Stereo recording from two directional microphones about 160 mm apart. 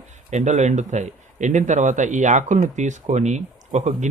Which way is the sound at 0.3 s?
45° right (ahead or behind).